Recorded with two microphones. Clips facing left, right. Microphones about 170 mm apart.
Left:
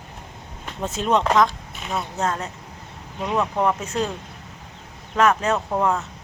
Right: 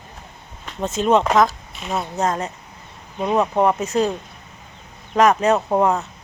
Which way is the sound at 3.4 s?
30° right (ahead or behind).